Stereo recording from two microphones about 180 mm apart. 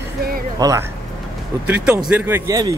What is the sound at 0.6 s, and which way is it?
Speech, 20° right (ahead or behind).